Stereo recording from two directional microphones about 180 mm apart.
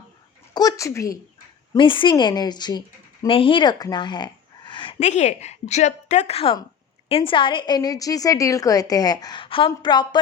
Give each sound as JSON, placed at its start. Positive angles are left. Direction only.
{"t": 0.5, "sound": "a woman's voice", "side_deg": 20}
{"t": 4.9, "sound": "a woman's voice", "side_deg": 40}